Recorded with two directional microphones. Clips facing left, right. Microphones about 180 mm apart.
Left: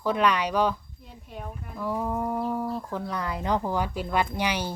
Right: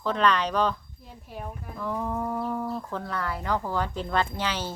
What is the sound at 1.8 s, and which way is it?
Speech, 10° left (ahead or behind).